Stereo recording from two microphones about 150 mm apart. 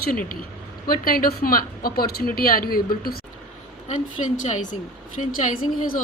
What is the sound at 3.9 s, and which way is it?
A woman's voice, 55° left (ahead or behind).